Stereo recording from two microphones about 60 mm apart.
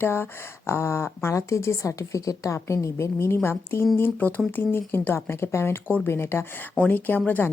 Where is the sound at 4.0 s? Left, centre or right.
Left.